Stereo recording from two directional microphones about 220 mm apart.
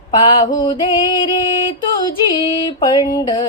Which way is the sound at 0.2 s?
20° left (ahead or behind).